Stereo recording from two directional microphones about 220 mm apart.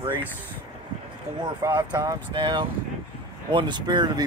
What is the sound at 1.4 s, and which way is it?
Speech, 20° right (ahead or behind).